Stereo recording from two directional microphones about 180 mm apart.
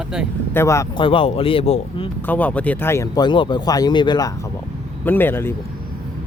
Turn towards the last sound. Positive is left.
turn(degrees=10)  # may be behind; listen again after turning